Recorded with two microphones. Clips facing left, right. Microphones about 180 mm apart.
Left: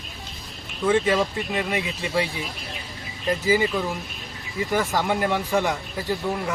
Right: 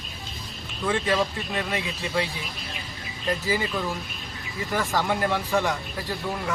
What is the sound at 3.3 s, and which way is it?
Speech, 15° left (ahead or behind).